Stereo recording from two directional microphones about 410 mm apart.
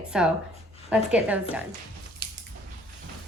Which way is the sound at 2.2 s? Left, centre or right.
Right.